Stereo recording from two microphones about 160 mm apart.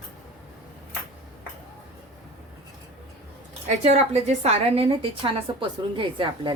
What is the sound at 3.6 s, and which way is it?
A woman's voice, 45° right (ahead or behind).